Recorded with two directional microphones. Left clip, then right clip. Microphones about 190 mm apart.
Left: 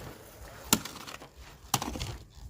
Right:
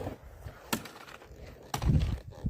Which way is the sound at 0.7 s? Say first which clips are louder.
Left 6 dB; 50° left (ahead or behind).